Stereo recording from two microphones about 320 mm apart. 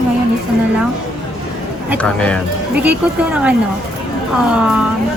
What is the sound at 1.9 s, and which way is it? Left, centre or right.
Speech, centre.